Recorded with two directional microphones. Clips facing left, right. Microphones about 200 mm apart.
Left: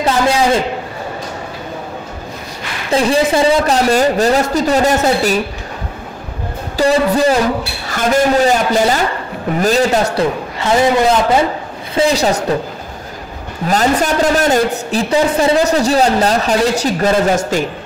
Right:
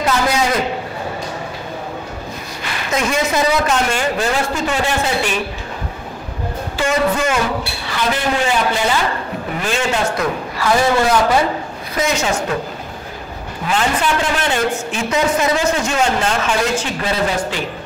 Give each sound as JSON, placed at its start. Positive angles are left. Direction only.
{"t": 0.0, "sound": "a sound", "side_deg": 30}
{"t": 2.9, "sound": "a man's voice", "side_deg": 30}
{"t": 6.8, "sound": "a man's voice", "side_deg": 35}
{"t": 7.8, "sound": "a woman's voice", "side_deg": 45}
{"t": 10.6, "sound": "a man's voice", "side_deg": 20}
{"t": 11.9, "sound": "a man's voice", "side_deg": 30}
{"t": 13.7, "sound": "a man's voice", "side_deg": 40}